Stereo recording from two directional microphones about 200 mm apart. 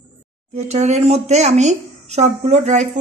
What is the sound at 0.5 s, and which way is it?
A woman's voice, 35° right (ahead or behind).